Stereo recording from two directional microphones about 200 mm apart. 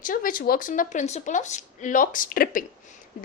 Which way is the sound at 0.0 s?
45° left (ahead or behind).